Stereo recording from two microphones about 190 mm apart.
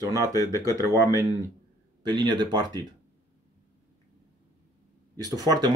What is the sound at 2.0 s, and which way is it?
Speech, 20° right (ahead or behind).